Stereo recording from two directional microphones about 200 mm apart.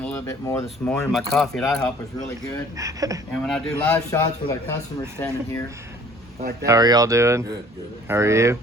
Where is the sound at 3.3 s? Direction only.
Centre (ahead or behind).